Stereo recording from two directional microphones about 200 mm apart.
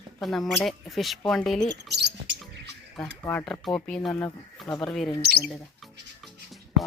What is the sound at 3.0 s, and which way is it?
Speech, 15° left (ahead or behind).